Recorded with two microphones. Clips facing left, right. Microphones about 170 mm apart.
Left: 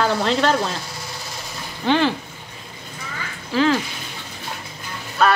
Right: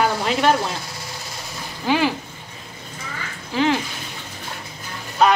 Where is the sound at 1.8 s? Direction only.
10° right (ahead or behind).